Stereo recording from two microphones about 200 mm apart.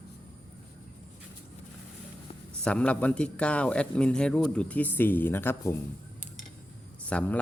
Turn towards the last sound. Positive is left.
turn(degrees=5)  # may be behind; listen again after turning